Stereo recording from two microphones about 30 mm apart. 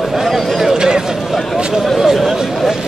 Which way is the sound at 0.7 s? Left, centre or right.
Right.